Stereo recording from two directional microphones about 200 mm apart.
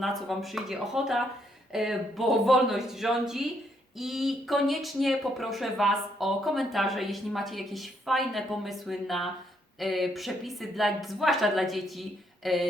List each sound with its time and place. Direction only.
0.0 s speech: centre (ahead or behind)